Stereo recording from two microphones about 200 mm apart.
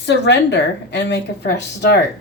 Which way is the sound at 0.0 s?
60° left (ahead or behind).